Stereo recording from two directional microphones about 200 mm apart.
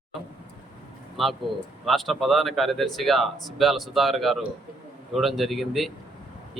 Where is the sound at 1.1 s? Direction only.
Centre (ahead or behind).